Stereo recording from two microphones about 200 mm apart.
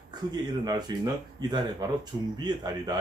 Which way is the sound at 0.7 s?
20° right (ahead or behind).